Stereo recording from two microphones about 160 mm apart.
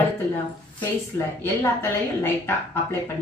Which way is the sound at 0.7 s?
15° left (ahead or behind).